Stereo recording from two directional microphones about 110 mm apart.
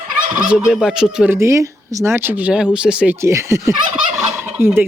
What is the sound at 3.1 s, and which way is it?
Speech, 25° right (ahead or behind).